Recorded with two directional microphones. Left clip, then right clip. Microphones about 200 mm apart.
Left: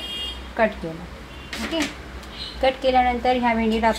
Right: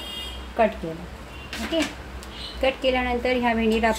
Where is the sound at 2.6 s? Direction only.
10° right (ahead or behind).